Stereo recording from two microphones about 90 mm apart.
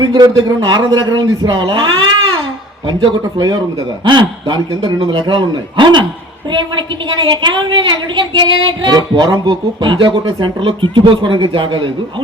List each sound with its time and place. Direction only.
0.0 s a woman's voice: 55° right (ahead or behind)
3.3 s a woman's voice: 50° right (ahead or behind)